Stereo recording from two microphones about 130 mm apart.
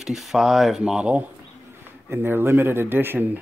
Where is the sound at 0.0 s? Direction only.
Centre (ahead or behind).